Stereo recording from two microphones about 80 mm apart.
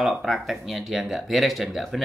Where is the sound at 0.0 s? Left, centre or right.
Centre.